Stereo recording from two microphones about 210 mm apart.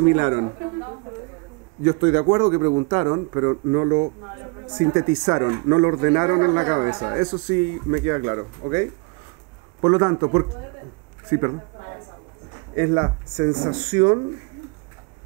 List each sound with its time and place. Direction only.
0.0 s speech: 15° right (ahead or behind)
2.0 s a woman's voice: 25° right (ahead or behind)
9.8 s speech: 25° right (ahead or behind)
11.2 s a sound: 20° right (ahead or behind)
12.5 s speech: 25° right (ahead or behind)
13.7 s speech: 10° right (ahead or behind)